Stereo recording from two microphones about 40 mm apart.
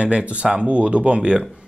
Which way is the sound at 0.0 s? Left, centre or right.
Right.